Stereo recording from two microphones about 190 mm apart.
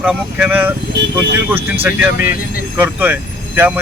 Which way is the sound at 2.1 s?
50° left (ahead or behind).